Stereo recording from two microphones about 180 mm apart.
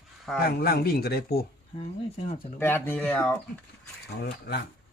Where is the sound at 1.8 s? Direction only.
35° left (ahead or behind).